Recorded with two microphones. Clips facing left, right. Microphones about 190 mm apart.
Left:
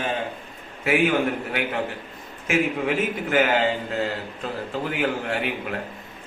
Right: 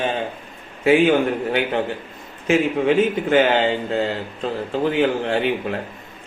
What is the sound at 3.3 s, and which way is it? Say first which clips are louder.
Speech: right 3 dB; 30° right (ahead or behind).